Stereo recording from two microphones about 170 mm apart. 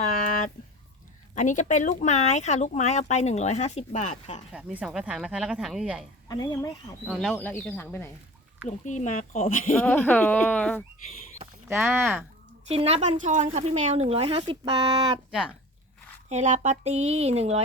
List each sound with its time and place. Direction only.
0.1 s a sound: 55° left (ahead or behind)
1.4 s speech: 45° left (ahead or behind)
4.5 s speech: 5° right (ahead or behind)
6.2 s speech: 20° left (ahead or behind)
7.1 s speech: centre (ahead or behind)
7.3 s speech: 10° left (ahead or behind)
8.6 s speech: 45° left (ahead or behind)
9.8 s speech: 10° left (ahead or behind)
12.6 s speech: 35° right (ahead or behind)
16.3 s speech: 45° right (ahead or behind)